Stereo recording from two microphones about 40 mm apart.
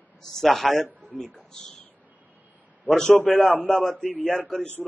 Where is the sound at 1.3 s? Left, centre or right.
Centre.